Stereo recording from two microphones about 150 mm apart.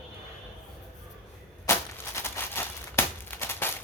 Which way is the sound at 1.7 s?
20° left (ahead or behind).